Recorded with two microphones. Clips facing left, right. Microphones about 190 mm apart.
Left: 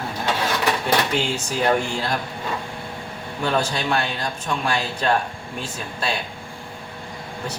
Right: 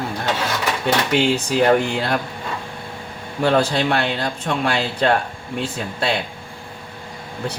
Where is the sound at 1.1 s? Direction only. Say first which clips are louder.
Right 6 dB; 65° right (ahead or behind).